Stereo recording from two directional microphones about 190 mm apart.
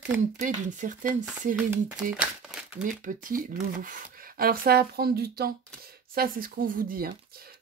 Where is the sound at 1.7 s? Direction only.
5° right (ahead or behind).